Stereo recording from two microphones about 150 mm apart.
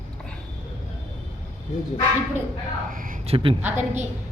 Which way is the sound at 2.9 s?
65° right (ahead or behind).